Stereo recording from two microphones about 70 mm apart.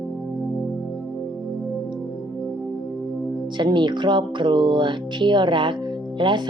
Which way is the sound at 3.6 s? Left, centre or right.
Right.